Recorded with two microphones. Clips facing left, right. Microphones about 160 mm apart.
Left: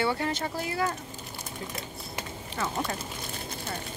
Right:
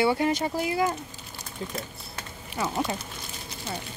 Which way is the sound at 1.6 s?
25° right (ahead or behind).